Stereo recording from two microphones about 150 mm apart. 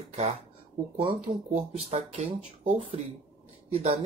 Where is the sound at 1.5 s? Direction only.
45° right (ahead or behind).